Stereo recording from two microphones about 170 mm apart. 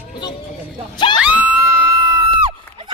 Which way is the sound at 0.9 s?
25° left (ahead or behind).